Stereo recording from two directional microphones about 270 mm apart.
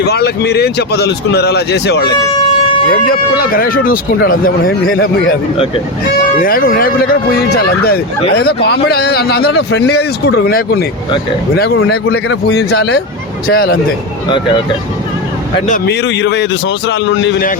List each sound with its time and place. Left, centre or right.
0.0 s a man's voice: left
3.1 s a man's voice: left
6.4 s a man's voice: left
12.0 s a man's voice: left
15.6 s a man's voice: left